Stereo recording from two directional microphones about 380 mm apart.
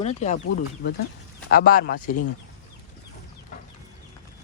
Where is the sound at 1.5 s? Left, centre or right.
Left.